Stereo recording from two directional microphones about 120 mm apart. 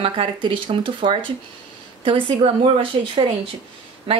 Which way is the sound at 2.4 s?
45° right (ahead or behind).